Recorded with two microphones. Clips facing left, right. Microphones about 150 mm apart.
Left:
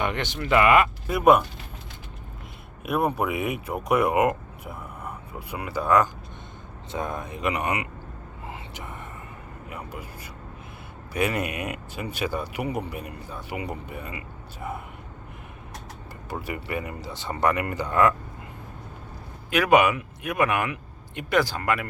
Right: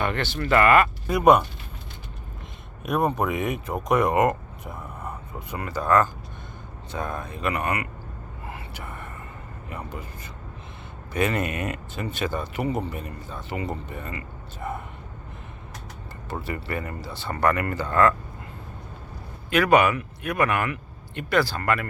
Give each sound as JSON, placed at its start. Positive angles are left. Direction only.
{"t": 0.0, "sound": "speech", "side_deg": 15}
{"t": 2.8, "sound": "speech", "side_deg": 5}
{"t": 8.4, "sound": "a sound", "side_deg": 20}
{"t": 9.6, "sound": "speech", "side_deg": 5}
{"t": 11.1, "sound": "speech", "side_deg": 10}
{"t": 16.3, "sound": "speech", "side_deg": 15}
{"t": 19.5, "sound": "speech", "side_deg": 10}